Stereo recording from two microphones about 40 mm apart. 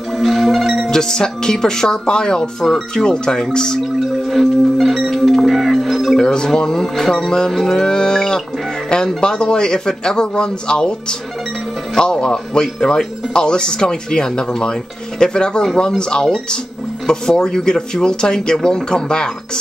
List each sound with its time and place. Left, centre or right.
0.1 s music: centre
0.8 s speech: centre
4.3 s music: centre
6.1 s speech: centre
7.5 s music: centre
7.8 s speech: centre